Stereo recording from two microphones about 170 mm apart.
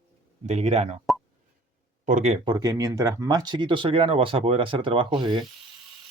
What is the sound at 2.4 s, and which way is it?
Speech, 25° right (ahead or behind).